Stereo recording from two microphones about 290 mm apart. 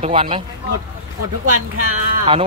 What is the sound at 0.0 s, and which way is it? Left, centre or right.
Speech, centre.